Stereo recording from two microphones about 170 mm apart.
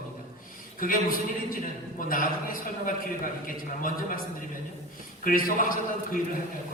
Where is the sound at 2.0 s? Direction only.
55° left (ahead or behind).